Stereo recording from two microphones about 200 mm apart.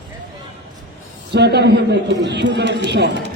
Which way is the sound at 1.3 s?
55° right (ahead or behind).